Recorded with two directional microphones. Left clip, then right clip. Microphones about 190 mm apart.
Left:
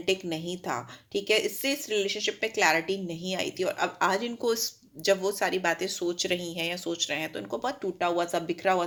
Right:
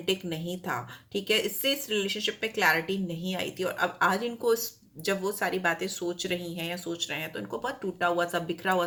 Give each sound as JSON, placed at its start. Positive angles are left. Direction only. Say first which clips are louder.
{"t": 0.0, "sound": "a woman's voice", "louder": "left 2 dB", "side_deg": 30}